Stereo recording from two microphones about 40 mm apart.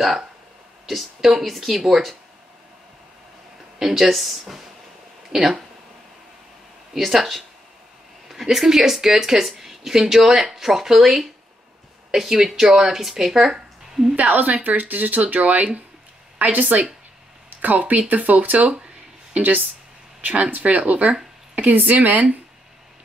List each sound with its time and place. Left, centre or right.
0.8 s speech: centre
3.8 s speech: centre
6.9 s speech: centre
14.1 s speech: right